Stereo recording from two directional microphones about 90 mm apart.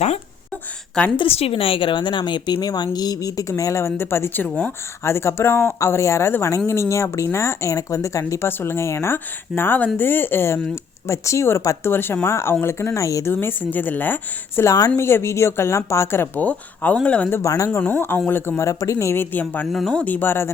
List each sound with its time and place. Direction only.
1.1 s a woman's voice: 80° left; by 4.4 s 25° left (ahead or behind)
4.4 s speech: 15° left (ahead or behind)
5.0 s speech: 30° left (ahead or behind)
13.3 s speech: 25° left (ahead or behind)
14.6 s speech: 40° left (ahead or behind)
15.0 s speech: 30° left (ahead or behind)
17.4 s speech: 40° left (ahead or behind)
17.7 s speech: 20° left (ahead or behind)
19.7 s speech: 5° left (ahead or behind)
20.1 s speech: 20° left (ahead or behind)